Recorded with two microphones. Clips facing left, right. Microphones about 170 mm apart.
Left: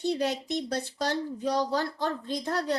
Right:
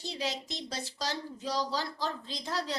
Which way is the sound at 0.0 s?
60° left (ahead or behind).